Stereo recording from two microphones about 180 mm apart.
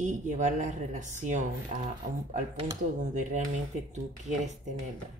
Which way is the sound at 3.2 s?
45° right (ahead or behind).